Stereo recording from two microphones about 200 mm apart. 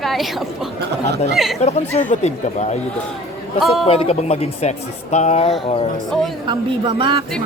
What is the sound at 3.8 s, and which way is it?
Speech, 30° left (ahead or behind).